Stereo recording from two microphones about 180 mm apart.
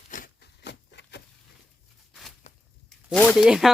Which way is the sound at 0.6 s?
70° left (ahead or behind).